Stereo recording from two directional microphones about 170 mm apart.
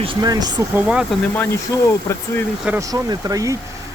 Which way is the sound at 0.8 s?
5° right (ahead or behind).